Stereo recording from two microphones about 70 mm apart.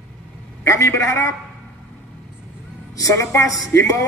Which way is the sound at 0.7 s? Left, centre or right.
Left.